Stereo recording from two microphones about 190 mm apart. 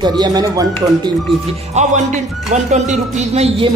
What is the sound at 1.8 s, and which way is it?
Music, 35° right (ahead or behind).